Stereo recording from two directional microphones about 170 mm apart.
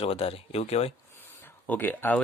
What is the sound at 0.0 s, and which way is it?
Speech, 35° left (ahead or behind).